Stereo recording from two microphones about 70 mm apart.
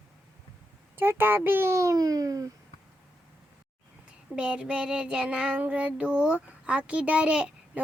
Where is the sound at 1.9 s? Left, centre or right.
Right.